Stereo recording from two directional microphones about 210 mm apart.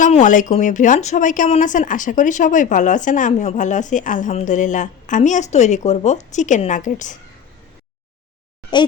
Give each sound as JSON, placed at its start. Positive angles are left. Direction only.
{"t": 0.0, "sound": "speech", "side_deg": 35}
{"t": 8.7, "sound": "speech", "side_deg": 20}